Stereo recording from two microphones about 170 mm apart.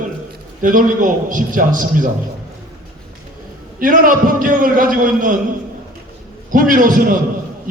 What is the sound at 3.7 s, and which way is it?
A man's voice, 55° right (ahead or behind).